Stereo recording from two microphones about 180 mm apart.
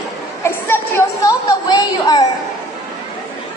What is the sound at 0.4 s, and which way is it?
A woman's voice, 15° left (ahead or behind).